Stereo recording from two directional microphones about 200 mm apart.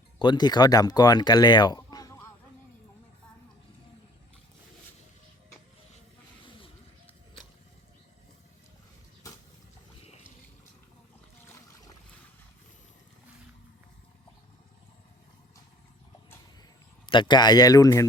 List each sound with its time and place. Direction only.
0.2 s speech: 20° left (ahead or behind)
11.4 s a sound: 15° left (ahead or behind)
17.1 s speech: 25° left (ahead or behind)